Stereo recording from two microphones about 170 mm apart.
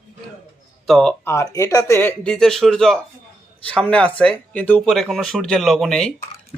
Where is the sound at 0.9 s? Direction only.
Centre (ahead or behind).